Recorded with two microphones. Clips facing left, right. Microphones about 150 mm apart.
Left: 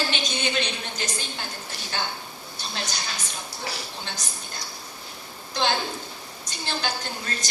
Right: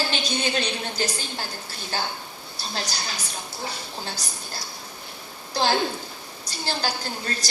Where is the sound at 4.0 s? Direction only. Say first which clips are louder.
Right 2 dB; 35° right (ahead or behind).